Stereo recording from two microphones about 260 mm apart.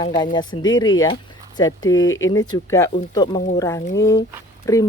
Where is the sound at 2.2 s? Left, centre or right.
Left.